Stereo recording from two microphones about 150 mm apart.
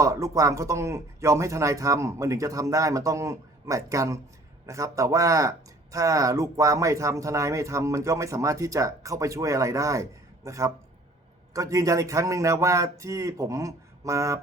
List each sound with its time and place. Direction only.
0.0 s speech: 20° right (ahead or behind)